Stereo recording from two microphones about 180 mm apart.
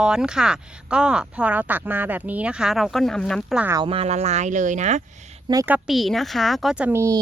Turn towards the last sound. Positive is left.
turn(degrees=-15)  # may be behind; listen again after turning